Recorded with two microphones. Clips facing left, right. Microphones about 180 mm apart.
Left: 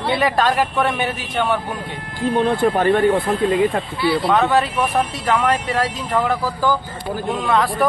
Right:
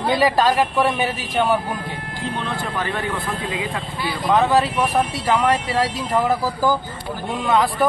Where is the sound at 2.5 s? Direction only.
55° left (ahead or behind).